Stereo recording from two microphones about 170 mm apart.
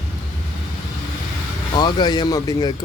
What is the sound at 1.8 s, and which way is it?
Speech, 25° left (ahead or behind).